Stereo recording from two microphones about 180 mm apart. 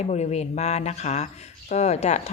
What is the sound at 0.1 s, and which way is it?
A woman's voice, 40° left (ahead or behind).